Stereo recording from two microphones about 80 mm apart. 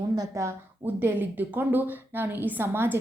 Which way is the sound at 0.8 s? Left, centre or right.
Right.